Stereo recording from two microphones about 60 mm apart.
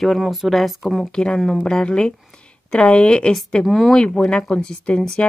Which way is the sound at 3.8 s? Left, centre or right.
Centre.